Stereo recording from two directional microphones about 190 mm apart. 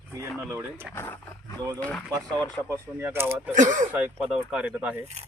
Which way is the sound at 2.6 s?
15° right (ahead or behind).